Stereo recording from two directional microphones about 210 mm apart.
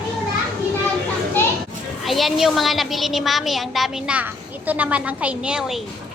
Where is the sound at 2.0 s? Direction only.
Centre (ahead or behind).